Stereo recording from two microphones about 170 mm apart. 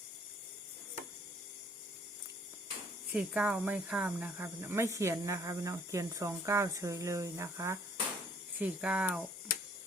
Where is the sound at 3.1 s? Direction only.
5° right (ahead or behind).